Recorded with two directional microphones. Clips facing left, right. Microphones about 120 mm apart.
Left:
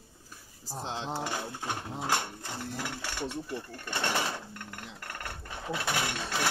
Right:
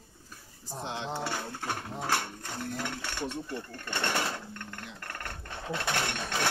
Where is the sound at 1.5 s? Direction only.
10° left (ahead or behind).